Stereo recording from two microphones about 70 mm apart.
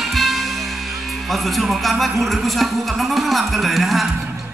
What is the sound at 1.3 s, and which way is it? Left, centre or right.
Speech, centre.